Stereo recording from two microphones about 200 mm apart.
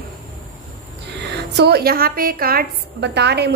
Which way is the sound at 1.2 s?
55° right (ahead or behind).